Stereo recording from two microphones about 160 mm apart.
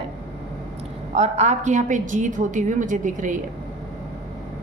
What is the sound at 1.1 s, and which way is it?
A woman's voice, 45° right (ahead or behind).